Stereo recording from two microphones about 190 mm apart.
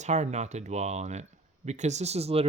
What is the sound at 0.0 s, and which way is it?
Speech, 35° right (ahead or behind).